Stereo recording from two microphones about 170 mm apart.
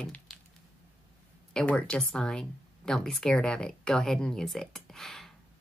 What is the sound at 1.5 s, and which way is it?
Speech, 5° left (ahead or behind).